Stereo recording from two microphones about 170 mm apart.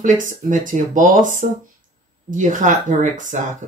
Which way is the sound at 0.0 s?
50° right (ahead or behind).